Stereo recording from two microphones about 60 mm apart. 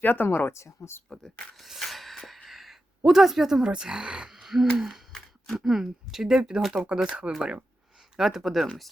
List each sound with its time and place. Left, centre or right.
0.0 s speech: left
0.3 s speech: left
1.1 s a sound: centre
3.0 s speech: centre
6.6 s speech: centre
6.8 s speech: centre
8.1 s speech: centre